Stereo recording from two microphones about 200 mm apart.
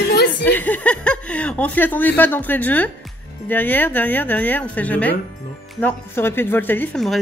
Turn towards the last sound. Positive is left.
turn(degrees=5)  # may be behind; listen again after turning